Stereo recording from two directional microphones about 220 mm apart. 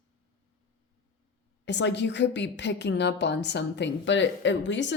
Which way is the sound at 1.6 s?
50° left (ahead or behind).